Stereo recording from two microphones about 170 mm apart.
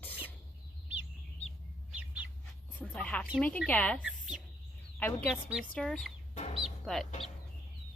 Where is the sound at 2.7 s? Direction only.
10° left (ahead or behind).